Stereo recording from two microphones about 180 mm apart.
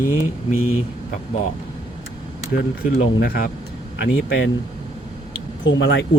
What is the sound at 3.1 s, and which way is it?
Speech, 60° left (ahead or behind).